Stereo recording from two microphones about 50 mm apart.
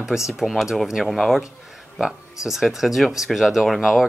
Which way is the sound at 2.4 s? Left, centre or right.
Centre.